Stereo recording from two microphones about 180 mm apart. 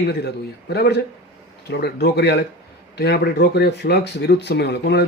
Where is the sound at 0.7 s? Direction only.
65° left (ahead or behind).